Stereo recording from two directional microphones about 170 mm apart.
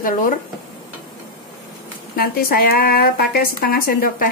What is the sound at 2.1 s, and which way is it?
Speech, 60° left (ahead or behind).